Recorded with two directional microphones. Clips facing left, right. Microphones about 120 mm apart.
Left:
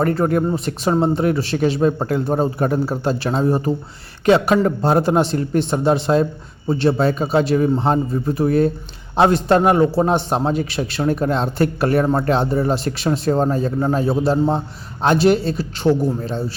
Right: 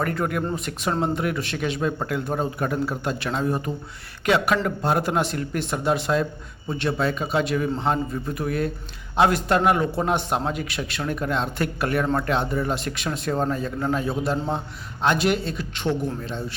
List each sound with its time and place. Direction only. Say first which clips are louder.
0.0 s a man's voice: left 7 dB; 30° left (ahead or behind)